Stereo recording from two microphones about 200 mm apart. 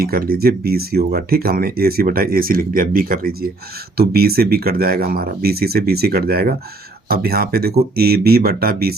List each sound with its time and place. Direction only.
0.0 s speech: 50° right (ahead or behind)